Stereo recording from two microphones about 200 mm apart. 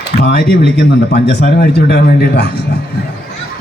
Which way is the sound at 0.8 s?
55° left (ahead or behind).